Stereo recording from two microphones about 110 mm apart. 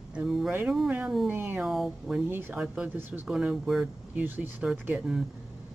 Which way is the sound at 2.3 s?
20° right (ahead or behind).